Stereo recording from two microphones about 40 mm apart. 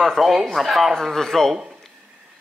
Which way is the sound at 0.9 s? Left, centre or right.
Centre.